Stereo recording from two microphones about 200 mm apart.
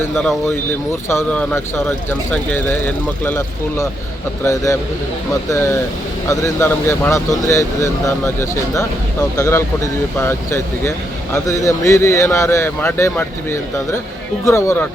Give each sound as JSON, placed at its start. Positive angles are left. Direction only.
{"t": 1.0, "sound": "speech", "side_deg": 10}